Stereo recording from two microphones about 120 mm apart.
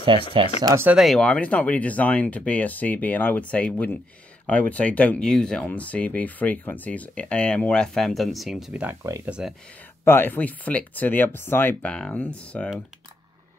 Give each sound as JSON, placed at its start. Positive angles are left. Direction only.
{"t": 0.6, "sound": "speech", "side_deg": -35}
{"t": 0.9, "sound": "speech", "side_deg": 0}
{"t": 10.0, "sound": "speech", "side_deg": 20}